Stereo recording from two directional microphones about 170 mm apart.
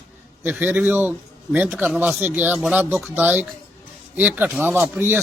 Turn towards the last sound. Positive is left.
turn(degrees=-10)  # may be behind; listen again after turning